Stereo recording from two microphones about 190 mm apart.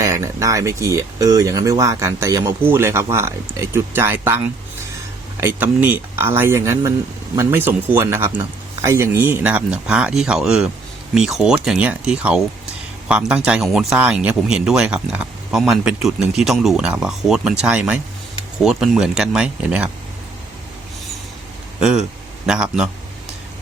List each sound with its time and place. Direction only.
0.0 s speech: 15° right (ahead or behind)
5.4 s speech: 10° right (ahead or behind)
21.8 s speech: 5° right (ahead or behind)